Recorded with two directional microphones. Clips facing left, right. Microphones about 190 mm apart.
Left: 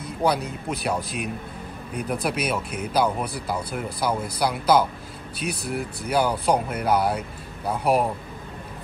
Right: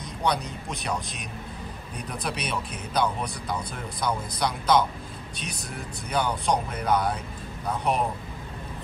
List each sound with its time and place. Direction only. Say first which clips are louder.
0.2 s speech: left 4 dB; 5° left (ahead or behind)
5.5 s speech: left 11 dB; 60° left (ahead or behind)
6.0 s speech: left 4 dB; 5° left (ahead or behind)